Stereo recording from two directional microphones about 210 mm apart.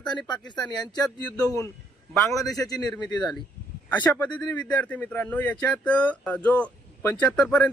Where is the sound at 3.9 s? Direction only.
10° left (ahead or behind).